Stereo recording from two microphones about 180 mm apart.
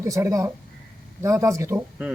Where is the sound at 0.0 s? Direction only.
20° right (ahead or behind).